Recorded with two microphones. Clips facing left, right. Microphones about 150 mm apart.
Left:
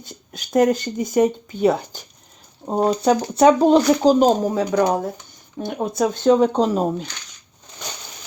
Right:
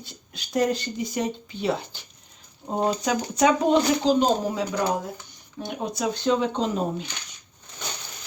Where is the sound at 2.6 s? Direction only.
30° left (ahead or behind).